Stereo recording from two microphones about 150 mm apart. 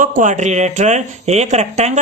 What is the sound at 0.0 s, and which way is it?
Speech, 60° right (ahead or behind).